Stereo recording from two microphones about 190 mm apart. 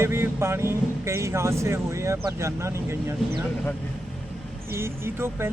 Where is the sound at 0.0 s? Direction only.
15° right (ahead or behind).